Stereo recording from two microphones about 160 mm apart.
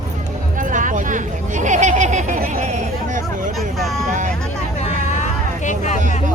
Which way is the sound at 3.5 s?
Centre (ahead or behind).